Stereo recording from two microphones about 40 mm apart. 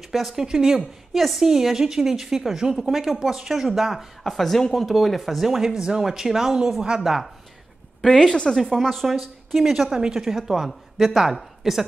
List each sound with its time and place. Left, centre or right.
0.1 s a woman's voice: centre
0.5 s speech: centre
1.1 s a woman's voice: centre
1.4 s a woman's voice: centre
4.2 s a woman's voice: centre
4.8 s a woman's voice: centre
5.7 s a woman's voice: centre
6.8 s speech: right
8.1 s a woman's voice: left
8.5 s a woman's voice: centre
9.9 s speech: centre
10.2 s a woman's voice: centre
10.7 s a woman's voice: centre